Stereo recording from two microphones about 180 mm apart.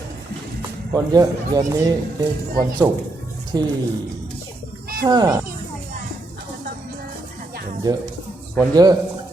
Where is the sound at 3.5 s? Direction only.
20° right (ahead or behind).